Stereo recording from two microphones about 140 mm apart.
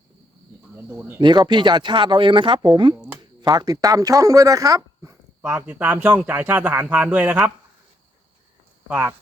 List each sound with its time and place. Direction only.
0.9 s speech: 15° right (ahead or behind)
1.5 s speech: 35° right (ahead or behind)
5.4 s speech: 10° right (ahead or behind)
8.9 s speech: 15° right (ahead or behind)